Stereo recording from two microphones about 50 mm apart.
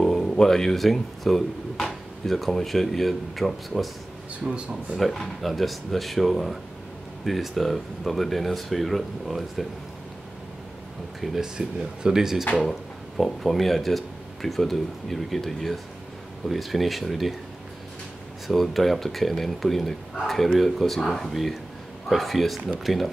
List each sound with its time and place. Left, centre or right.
0.0 s a sound: centre
0.4 s speech: centre
4.5 s speech: right
4.9 s speech: centre
11.1 s speech: centre
13.2 s speech: centre
18.5 s speech: centre